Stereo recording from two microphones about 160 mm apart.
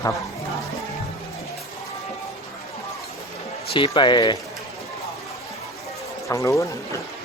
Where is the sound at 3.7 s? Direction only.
35° left (ahead or behind).